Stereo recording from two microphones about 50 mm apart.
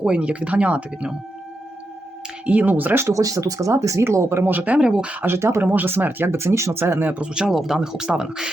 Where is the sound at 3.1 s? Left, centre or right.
Right.